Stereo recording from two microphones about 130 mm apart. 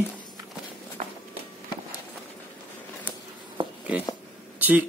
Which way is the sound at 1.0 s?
80° right.